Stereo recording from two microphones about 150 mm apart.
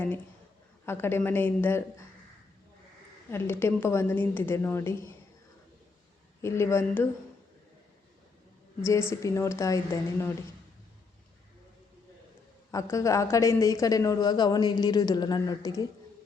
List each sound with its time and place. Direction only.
0.9 s a woman's voice: 15° left (ahead or behind)
3.2 s a woman's voice: 15° left (ahead or behind)
6.4 s a woman's voice: 15° left (ahead or behind)
8.8 s a woman's voice: 20° left (ahead or behind)
12.7 s a woman's voice: 20° left (ahead or behind)